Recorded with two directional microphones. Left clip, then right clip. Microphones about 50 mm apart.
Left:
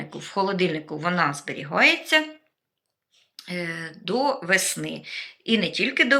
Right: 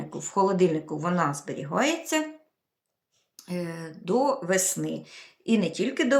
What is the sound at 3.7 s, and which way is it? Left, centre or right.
Speech, right.